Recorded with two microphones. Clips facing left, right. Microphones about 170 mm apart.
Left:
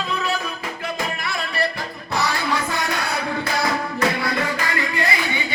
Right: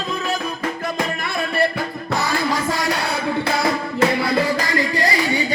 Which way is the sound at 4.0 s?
35° right (ahead or behind).